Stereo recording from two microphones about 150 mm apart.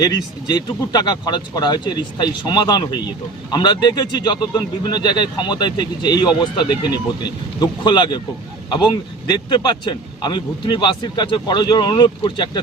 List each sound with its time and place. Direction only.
0.0 s speech: 25° left (ahead or behind)